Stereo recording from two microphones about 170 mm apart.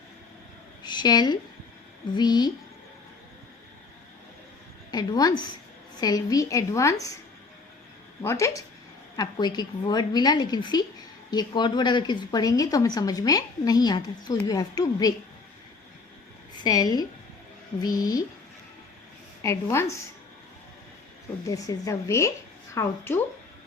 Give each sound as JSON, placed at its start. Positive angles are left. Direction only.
{"t": 0.8, "sound": "a woman's voice", "side_deg": 25}
{"t": 4.9, "sound": "a woman's voice", "side_deg": 25}
{"t": 8.2, "sound": "a woman's voice", "side_deg": 15}
{"t": 16.6, "sound": "a woman's voice", "side_deg": 20}
{"t": 19.4, "sound": "a woman's voice", "side_deg": 15}
{"t": 21.4, "sound": "a woman's voice", "side_deg": 20}